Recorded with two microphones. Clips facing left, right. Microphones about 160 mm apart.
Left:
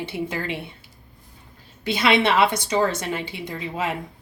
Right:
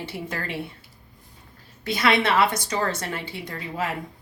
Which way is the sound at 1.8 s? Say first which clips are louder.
Left 2 dB; 25° left (ahead or behind).